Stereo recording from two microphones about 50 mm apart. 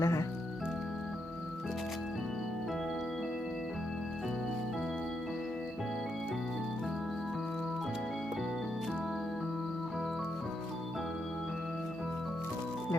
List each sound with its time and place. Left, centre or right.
0.0 s music: left